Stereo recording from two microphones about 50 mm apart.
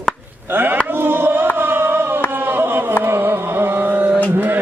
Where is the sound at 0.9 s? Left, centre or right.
Right.